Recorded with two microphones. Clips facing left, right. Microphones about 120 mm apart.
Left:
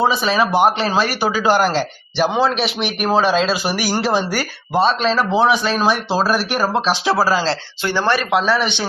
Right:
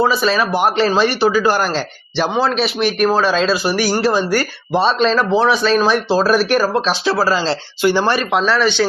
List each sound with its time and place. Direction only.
0.0 s speech: 15° left (ahead or behind)
7.8 s speech: 10° right (ahead or behind)
8.1 s speech: 5° left (ahead or behind)